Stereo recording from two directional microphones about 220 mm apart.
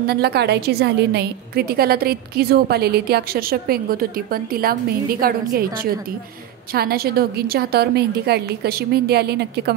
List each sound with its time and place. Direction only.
0.0 s a woman's voice: 45° right (ahead or behind)